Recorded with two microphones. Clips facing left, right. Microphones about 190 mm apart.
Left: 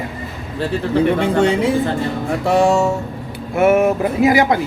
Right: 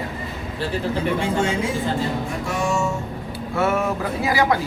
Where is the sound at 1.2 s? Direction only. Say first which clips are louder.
Left 7 dB; 65° left (ahead or behind).